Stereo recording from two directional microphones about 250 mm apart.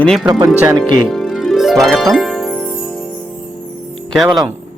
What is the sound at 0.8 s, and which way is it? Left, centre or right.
Harp, centre.